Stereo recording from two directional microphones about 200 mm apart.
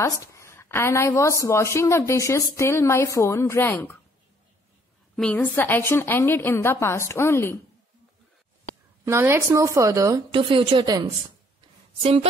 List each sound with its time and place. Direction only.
0.0 s a woman's voice: 15° left (ahead or behind)
5.1 s a woman's voice: 5° left (ahead or behind)
9.0 s a woman's voice: 15° right (ahead or behind)